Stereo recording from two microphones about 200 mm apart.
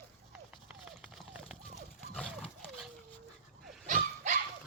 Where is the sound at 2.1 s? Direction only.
5° left (ahead or behind).